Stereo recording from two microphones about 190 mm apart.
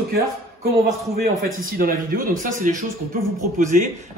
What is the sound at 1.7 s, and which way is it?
A man's voice, 50° right (ahead or behind).